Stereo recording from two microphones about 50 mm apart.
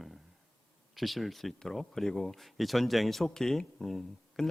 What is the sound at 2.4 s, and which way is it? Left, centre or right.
Speech, centre.